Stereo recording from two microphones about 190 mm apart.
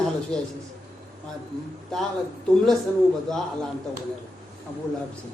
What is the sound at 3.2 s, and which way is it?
Speech, centre (ahead or behind).